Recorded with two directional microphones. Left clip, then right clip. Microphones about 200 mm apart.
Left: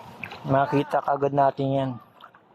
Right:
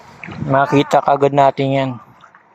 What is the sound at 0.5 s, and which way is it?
Speech, 15° right (ahead or behind).